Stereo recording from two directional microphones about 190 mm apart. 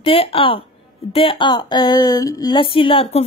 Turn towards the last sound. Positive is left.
turn(degrees=30)  # may be behind; listen again after turning